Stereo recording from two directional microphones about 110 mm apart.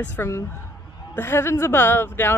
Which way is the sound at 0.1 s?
20° left (ahead or behind).